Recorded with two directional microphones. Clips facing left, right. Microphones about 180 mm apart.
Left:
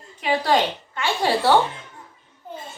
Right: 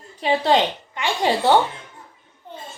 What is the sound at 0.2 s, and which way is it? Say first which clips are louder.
A woman's voice: right 2 dB; 25° right (ahead or behind).